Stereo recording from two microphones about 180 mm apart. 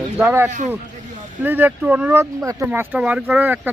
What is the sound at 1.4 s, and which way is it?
Speech, 10° right (ahead or behind).